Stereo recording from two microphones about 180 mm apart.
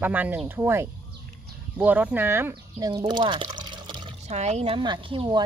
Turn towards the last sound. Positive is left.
turn(degrees=-25)  # may be behind; listen again after turning